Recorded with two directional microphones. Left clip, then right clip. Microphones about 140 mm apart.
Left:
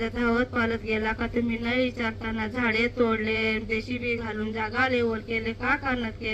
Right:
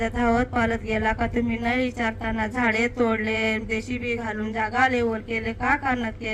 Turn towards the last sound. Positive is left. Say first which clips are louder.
# right 3 dB
turn(degrees=-30)  # may be behind; listen again after turning